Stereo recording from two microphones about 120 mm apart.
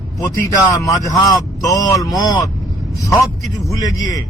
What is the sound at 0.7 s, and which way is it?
A man's voice, 30° left (ahead or behind).